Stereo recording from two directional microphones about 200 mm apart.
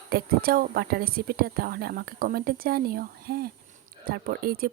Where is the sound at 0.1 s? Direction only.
45° right (ahead or behind).